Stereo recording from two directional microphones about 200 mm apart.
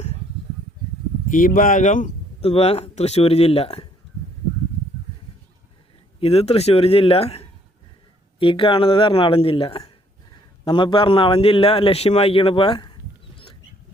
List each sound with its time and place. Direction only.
1.3 s a man's voice: 40° left (ahead or behind)
6.1 s a man's voice: 30° left (ahead or behind)